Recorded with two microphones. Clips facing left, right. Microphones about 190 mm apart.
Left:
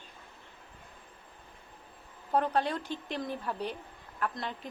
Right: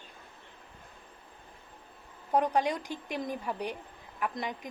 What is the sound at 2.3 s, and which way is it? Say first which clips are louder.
Speech: right 2 dB; 15° right (ahead or behind).